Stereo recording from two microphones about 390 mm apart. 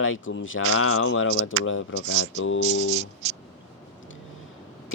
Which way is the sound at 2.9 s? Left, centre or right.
Centre.